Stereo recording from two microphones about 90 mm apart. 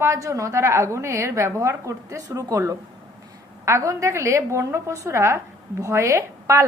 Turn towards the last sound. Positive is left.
turn(degrees=-30)  # may be behind; listen again after turning